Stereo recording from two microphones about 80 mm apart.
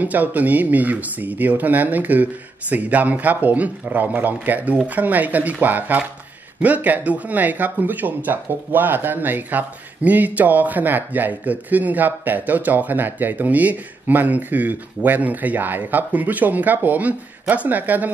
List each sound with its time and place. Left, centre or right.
0.0 s speech: centre